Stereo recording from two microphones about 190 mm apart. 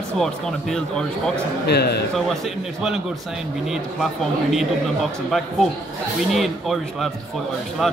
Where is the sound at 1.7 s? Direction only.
60° left (ahead or behind).